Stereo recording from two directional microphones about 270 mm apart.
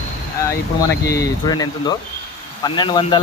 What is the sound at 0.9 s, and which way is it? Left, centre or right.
Speech, left.